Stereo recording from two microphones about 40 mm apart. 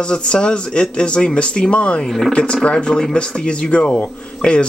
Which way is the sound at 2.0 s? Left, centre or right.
Centre.